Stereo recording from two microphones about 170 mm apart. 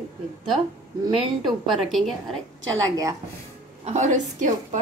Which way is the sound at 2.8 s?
20° right (ahead or behind).